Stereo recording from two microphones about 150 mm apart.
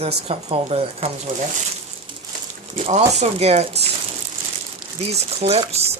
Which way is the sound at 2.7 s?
45° right (ahead or behind).